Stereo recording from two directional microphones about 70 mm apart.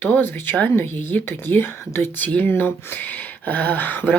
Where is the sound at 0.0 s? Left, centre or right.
Left.